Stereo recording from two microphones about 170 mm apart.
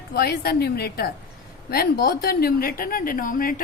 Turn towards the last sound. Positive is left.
turn(degrees=55)  # may be behind; listen again after turning